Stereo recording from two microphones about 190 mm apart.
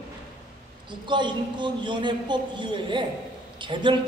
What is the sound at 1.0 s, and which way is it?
A man's voice, 25° right (ahead or behind).